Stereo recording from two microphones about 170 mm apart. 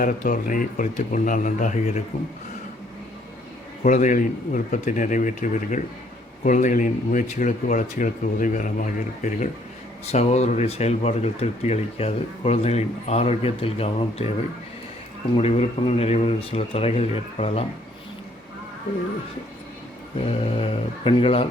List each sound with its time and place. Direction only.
0.0 s speech: 55° left (ahead or behind)
3.8 s speech: 45° left (ahead or behind)
15.4 s speech: 40° left (ahead or behind)
20.1 s speech: 35° left (ahead or behind)